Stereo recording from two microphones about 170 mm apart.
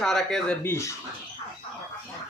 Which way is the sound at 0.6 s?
15° left (ahead or behind).